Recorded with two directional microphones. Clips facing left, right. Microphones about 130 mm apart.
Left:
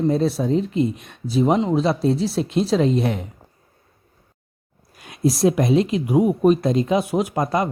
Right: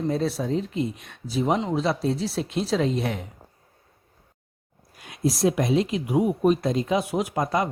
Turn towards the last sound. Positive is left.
turn(degrees=40)  # may be behind; listen again after turning